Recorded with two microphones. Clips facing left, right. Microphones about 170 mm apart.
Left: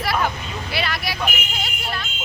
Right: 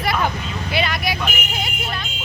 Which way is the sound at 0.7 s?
Centre (ahead or behind).